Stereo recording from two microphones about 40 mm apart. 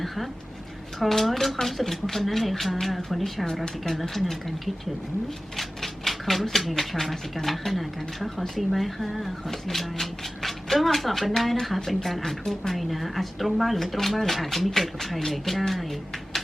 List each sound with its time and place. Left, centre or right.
0.9 s a woman's voice: centre
5.5 s a sound: centre
7.0 s a woman's voice: centre